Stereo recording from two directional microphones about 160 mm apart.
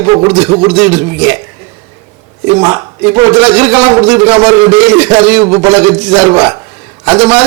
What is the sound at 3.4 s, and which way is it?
Speech, 10° right (ahead or behind).